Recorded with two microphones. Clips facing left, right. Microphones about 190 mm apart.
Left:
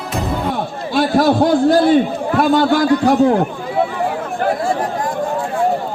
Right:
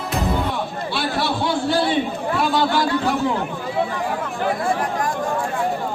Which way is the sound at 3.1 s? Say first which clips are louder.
Left 9 dB; 50° left (ahead or behind).